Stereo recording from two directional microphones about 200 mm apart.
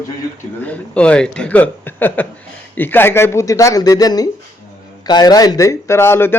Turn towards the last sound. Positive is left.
turn(degrees=10)  # may be behind; listen again after turning